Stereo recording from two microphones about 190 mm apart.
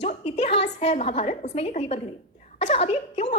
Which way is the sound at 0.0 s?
35° left (ahead or behind).